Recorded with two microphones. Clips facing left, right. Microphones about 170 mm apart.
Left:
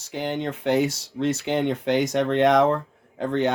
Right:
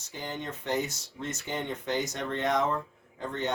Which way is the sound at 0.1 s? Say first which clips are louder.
Left 10 dB; 90° left.